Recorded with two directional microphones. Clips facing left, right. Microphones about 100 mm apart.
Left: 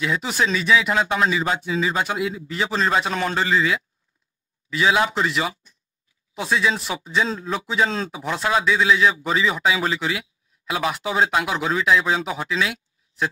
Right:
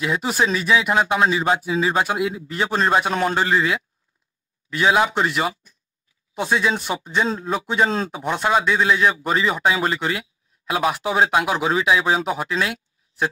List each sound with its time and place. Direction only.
0.0 s speech: 35° right (ahead or behind)
1.2 s a man's voice: 25° right (ahead or behind)
1.6 s a man's voice: 5° right (ahead or behind)